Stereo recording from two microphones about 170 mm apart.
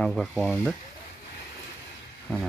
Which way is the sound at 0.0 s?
5° left (ahead or behind).